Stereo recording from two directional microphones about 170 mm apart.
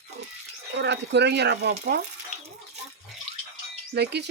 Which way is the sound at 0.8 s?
90° right.